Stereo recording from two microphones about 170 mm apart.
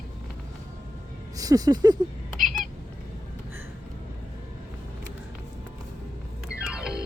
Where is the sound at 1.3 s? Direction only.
20° right (ahead or behind).